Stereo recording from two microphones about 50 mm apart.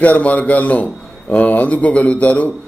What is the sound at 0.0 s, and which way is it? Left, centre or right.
A man's voice, left.